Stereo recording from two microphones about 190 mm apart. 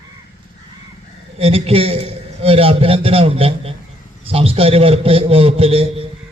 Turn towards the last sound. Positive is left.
turn(degrees=-30)  # may be behind; listen again after turning